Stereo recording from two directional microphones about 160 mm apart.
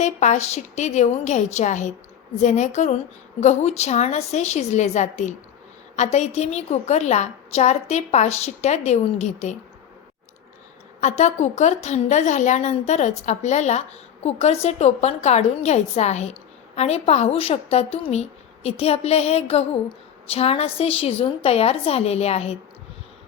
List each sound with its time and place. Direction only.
0.0 s a woman's voice: 45° left (ahead or behind)
11.0 s a woman's voice: 45° left (ahead or behind)